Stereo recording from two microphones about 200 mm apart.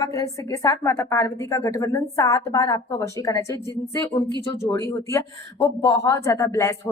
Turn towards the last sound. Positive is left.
turn(degrees=15)  # may be behind; listen again after turning